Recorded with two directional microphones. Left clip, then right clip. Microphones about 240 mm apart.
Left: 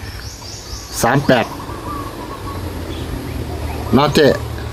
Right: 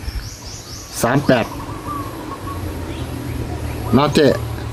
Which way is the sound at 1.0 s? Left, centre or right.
Centre.